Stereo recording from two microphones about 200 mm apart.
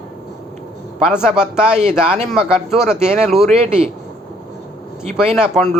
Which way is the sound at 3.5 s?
30° right (ahead or behind).